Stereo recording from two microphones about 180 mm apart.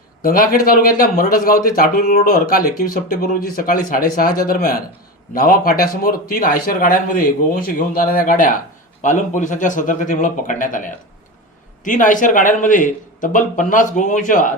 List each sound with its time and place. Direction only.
0.2 s a man's voice: 55° left (ahead or behind)